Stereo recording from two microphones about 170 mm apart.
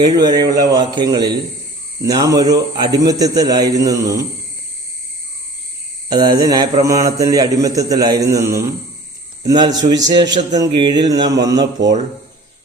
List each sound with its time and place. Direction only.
0.0 s a man's voice: 25° right (ahead or behind)
6.1 s a man's voice: 20° right (ahead or behind)